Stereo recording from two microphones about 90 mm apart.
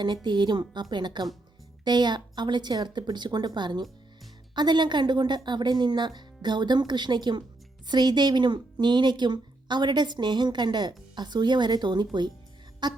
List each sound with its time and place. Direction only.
0.3 s a woman's voice: 55° right (ahead or behind)